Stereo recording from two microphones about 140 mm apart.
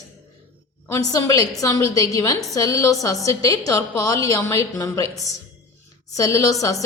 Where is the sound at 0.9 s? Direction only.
25° left (ahead or behind).